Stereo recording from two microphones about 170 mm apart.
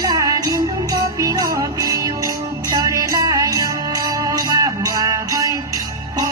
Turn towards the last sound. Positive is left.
turn(degrees=-20)  # may be behind; listen again after turning